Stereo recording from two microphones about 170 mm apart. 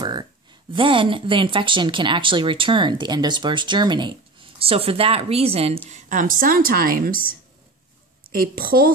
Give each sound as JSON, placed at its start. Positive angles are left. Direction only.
{"t": 0.0, "sound": "a woman's voice", "side_deg": -25}